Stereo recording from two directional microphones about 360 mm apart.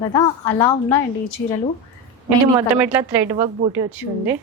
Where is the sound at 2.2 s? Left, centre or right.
Centre.